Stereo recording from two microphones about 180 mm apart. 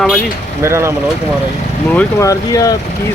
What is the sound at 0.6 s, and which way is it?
Speech, 15° right (ahead or behind).